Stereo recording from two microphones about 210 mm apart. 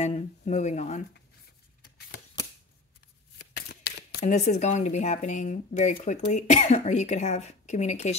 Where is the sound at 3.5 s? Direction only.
50° left (ahead or behind).